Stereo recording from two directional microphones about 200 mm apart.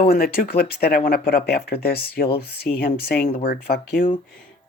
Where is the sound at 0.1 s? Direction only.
50° left (ahead or behind).